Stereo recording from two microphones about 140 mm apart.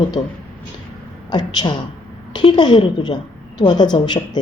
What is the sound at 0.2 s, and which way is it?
A woman's voice, 30° left (ahead or behind).